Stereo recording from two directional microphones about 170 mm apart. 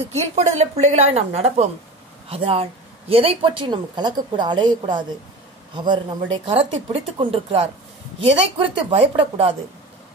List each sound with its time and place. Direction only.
0.1 s a woman's voice: 40° right (ahead or behind)